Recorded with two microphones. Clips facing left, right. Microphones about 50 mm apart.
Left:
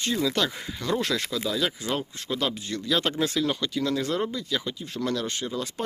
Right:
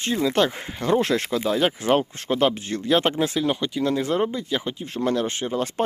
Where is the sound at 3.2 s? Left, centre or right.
Centre.